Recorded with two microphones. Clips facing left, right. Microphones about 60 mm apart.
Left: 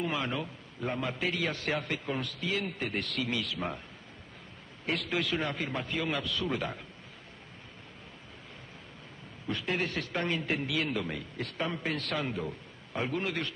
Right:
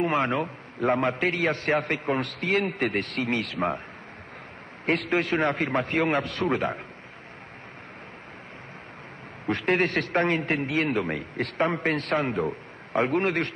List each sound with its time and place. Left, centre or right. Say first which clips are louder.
0.0 s a man's voice: right 8 dB; right
4.8 s a man's voice: right 7 dB; right
9.5 s a man's voice: right 9 dB; right